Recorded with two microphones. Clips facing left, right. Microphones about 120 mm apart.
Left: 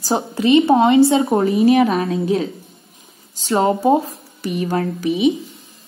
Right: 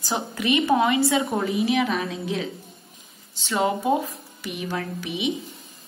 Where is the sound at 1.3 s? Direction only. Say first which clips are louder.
Left 9 dB; 50° left (ahead or behind).